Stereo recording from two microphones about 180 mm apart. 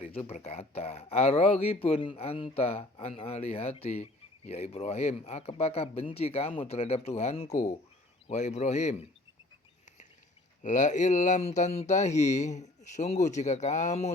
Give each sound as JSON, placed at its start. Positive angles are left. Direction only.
{"t": 0.0, "sound": "speech", "side_deg": 30}
{"t": 10.6, "sound": "speech", "side_deg": 45}